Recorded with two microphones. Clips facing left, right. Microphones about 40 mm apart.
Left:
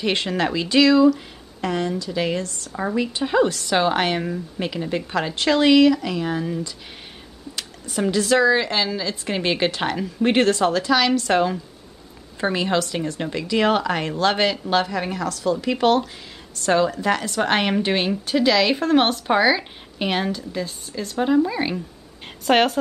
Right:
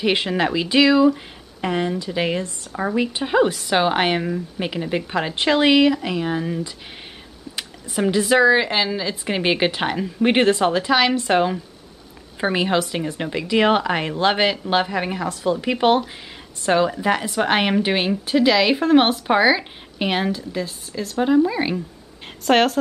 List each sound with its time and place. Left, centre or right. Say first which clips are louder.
0.0 s a woman's voice: right 2 dB; centre
2.7 s a woman's voice: right 2 dB; centre
3.0 s a woman's voice: right 1 dB; centre
4.2 s a woman's voice: right 1 dB; centre